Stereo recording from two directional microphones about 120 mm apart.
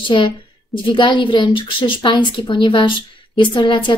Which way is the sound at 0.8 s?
40° left (ahead or behind).